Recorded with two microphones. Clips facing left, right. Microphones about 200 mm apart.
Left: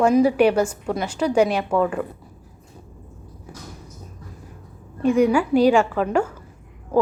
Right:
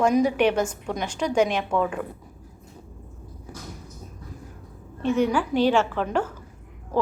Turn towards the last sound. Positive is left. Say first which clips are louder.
# left 4 dB
turn(degrees=10)  # may be behind; listen again after turning